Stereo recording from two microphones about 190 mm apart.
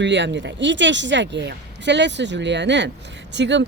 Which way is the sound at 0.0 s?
70° right (ahead or behind).